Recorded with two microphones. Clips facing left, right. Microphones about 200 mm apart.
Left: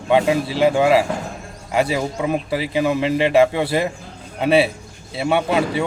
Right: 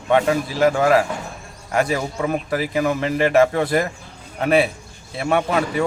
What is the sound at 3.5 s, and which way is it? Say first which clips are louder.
Speech: even; 5° left (ahead or behind).